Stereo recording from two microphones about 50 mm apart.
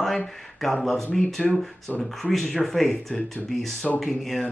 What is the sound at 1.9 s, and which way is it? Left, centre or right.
Speech, left.